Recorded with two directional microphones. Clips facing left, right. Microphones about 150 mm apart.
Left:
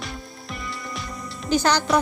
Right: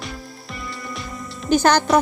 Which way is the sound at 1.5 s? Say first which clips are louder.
Right 4 dB; 50° right (ahead or behind).